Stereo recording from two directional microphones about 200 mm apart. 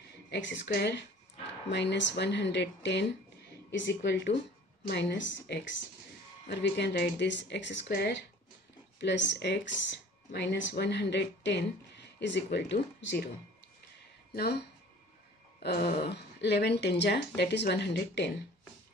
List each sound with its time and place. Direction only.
0.3 s speech: 65° left (ahead or behind)
14.3 s speech: 55° left (ahead or behind)